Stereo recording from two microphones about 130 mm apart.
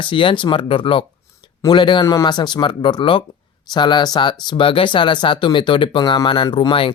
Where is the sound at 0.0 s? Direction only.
40° left (ahead or behind).